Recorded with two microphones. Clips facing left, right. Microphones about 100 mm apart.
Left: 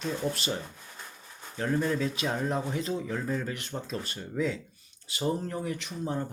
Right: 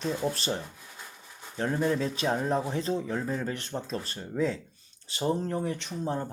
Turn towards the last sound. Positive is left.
turn(degrees=-30)  # may be behind; listen again after turning